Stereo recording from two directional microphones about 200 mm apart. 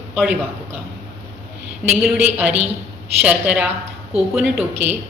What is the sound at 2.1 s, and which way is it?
A woman's voice, 10° right (ahead or behind).